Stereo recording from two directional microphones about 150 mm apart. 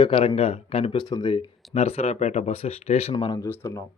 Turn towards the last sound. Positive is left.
turn(degrees=20)  # may be behind; listen again after turning